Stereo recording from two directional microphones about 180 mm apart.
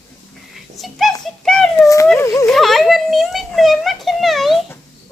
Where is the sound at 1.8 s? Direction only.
15° left (ahead or behind).